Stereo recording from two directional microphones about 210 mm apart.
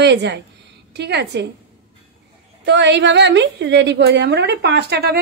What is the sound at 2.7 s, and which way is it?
A woman's voice, 55° right (ahead or behind).